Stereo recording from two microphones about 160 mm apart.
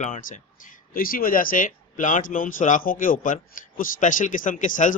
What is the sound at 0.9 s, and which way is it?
A man's voice, 65° left (ahead or behind).